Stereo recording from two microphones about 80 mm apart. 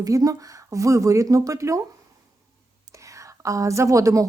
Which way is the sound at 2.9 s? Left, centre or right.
Right.